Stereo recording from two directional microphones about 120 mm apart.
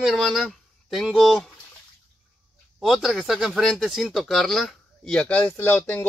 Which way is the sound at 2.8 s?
5° right (ahead or behind).